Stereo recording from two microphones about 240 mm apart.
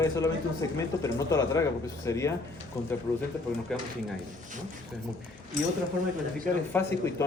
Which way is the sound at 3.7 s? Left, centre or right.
Centre.